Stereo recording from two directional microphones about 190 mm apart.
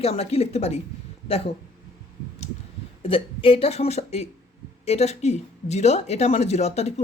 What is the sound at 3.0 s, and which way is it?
Speech, 30° left (ahead or behind).